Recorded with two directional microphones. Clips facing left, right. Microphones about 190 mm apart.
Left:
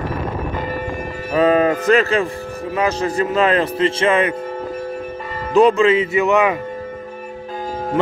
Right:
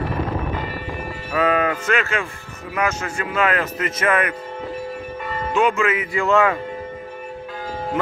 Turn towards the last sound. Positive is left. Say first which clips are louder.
# left 2 dB
turn(degrees=20)  # may be behind; listen again after turning